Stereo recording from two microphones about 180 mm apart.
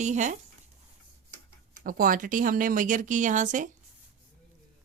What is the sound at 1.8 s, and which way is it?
Speech, 50° right (ahead or behind).